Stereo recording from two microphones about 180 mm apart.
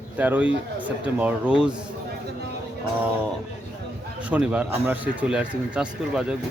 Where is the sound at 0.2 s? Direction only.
10° right (ahead or behind).